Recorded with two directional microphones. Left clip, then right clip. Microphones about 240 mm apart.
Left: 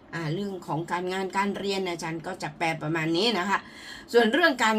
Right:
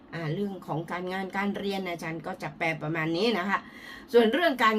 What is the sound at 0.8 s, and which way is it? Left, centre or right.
A woman's voice, centre.